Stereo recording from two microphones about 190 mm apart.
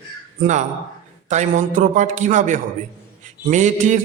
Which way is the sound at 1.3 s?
40° right (ahead or behind).